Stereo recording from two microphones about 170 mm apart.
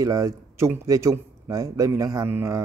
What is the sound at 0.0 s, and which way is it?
A man's voice, 20° right (ahead or behind).